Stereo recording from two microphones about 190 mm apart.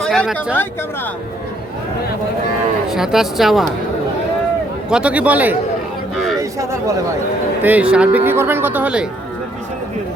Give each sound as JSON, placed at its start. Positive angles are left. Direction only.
{"t": 0.0, "sound": "speech", "side_deg": 0}
{"t": 2.9, "sound": "speech", "side_deg": 0}
{"t": 4.9, "sound": "speech", "side_deg": -5}
{"t": 6.1, "sound": "a sound", "side_deg": 0}
{"t": 6.4, "sound": "speech", "side_deg": -15}